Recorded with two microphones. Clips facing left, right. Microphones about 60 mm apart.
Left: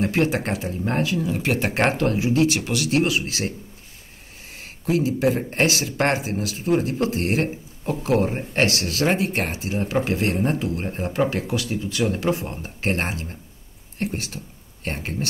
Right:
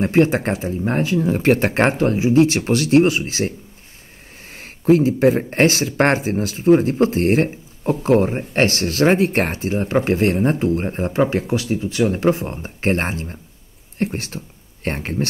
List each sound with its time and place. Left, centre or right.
0.0 s speech: right
4.6 s speech: right